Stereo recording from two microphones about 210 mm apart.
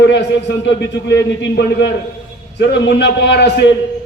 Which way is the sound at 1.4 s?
55° left (ahead or behind).